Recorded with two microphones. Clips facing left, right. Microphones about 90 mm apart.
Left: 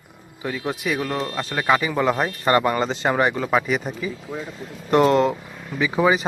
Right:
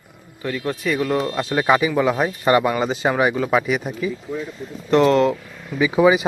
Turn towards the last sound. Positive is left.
turn(degrees=-5)  # may be behind; listen again after turning